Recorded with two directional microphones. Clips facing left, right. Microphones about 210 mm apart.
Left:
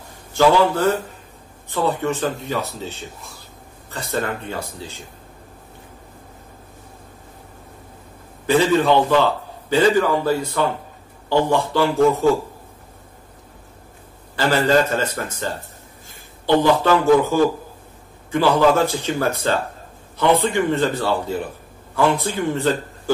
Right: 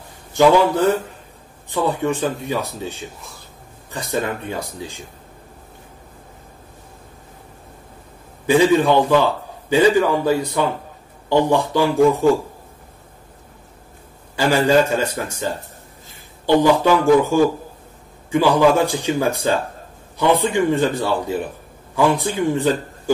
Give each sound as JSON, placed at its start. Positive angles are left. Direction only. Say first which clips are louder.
{"t": 0.3, "sound": "a man's voice", "louder": "right 2 dB", "side_deg": -15}
{"t": 8.5, "sound": "speech", "louder": "right 2 dB", "side_deg": -15}
{"t": 14.3, "sound": "a man's voice", "louder": "right 2 dB", "side_deg": -15}